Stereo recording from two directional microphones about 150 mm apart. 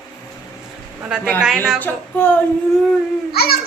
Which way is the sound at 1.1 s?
5° right (ahead or behind).